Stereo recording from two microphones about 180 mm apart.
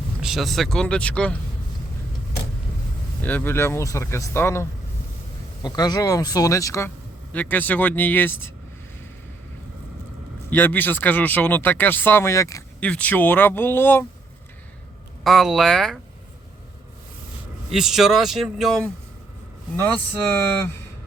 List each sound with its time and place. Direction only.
0.2 s speech: centre (ahead or behind)
3.2 s speech: 10° left (ahead or behind)
5.6 s speech: 20° left (ahead or behind)
10.5 s speech: 10° left (ahead or behind)
15.2 s speech: centre (ahead or behind)
17.7 s speech: centre (ahead or behind)